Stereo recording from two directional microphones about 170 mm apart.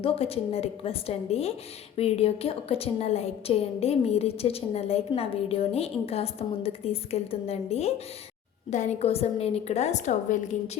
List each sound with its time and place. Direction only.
0.0 s a woman's voice: 35° left (ahead or behind)